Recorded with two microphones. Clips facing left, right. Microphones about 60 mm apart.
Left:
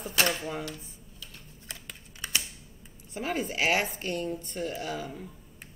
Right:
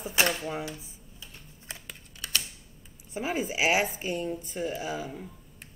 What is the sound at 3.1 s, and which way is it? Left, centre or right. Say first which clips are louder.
Speech: right 1 dB; centre.